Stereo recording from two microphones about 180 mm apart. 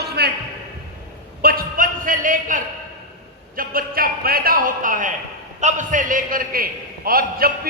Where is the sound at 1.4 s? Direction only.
55° right (ahead or behind).